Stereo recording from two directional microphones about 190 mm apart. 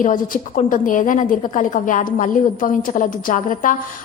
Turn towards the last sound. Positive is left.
turn(degrees=45)  # may be behind; listen again after turning